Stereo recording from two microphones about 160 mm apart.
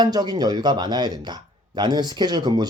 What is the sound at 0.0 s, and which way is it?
Speech, 25° right (ahead or behind).